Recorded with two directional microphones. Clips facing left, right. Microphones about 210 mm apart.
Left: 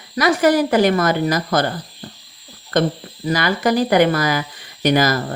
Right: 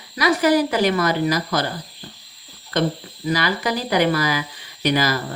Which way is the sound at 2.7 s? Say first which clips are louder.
Left 3 dB; 50° left (ahead or behind).